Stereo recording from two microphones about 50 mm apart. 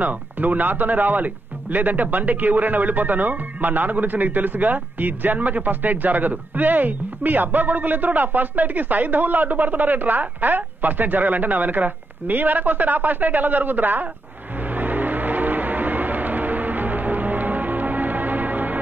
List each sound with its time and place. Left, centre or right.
0.0 s a man's voice: right
14.7 s music: right